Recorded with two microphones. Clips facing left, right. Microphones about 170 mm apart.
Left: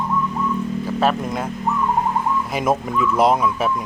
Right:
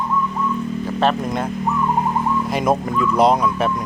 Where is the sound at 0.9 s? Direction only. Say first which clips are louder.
Right 1 dB; 5° left (ahead or behind).